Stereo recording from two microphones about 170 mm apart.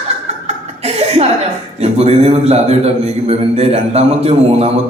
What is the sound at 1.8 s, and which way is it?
A man's voice, 35° right (ahead or behind).